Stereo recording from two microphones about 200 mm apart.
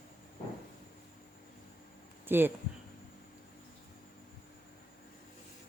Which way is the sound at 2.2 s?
10° right (ahead or behind).